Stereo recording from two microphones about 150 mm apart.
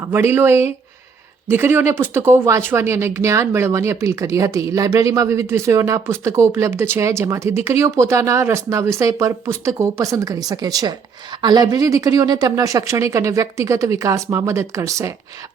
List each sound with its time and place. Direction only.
0.0 s speech: 15° right (ahead or behind)